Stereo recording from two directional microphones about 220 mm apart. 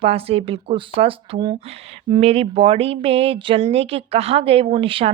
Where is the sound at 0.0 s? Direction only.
25° right (ahead or behind).